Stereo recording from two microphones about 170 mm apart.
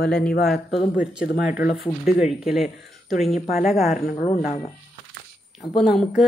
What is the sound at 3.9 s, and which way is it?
Speech, 35° left (ahead or behind).